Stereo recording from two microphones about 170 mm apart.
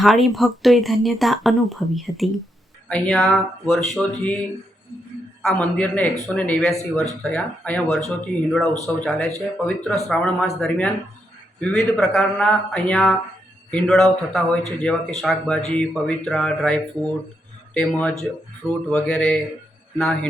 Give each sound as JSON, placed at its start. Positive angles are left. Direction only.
{"t": 0.0, "sound": "a man's voice", "side_deg": 0}